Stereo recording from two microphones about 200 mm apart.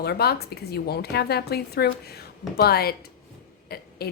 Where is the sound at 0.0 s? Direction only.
55° left (ahead or behind).